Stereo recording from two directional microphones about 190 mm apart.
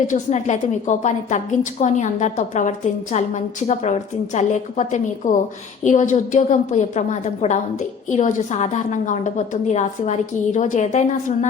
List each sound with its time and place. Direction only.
0.1 s a woman's voice: 40° left (ahead or behind)